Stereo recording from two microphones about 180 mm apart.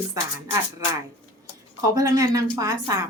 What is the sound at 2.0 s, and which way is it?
A woman's voice, 20° right (ahead or behind).